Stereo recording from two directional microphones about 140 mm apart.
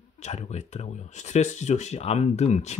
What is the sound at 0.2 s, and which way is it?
Speech, 55° left (ahead or behind).